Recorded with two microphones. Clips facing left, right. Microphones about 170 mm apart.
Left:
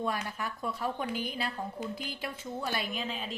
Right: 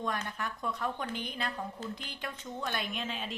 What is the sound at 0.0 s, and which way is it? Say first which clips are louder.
A woman's voice: left 2 dB; 5° left (ahead or behind).